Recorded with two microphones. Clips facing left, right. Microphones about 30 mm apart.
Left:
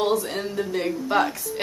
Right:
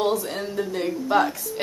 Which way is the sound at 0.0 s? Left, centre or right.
Centre.